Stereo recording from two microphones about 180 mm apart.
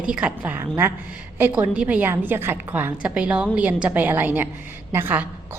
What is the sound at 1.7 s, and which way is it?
A woman's voice, 5° right (ahead or behind).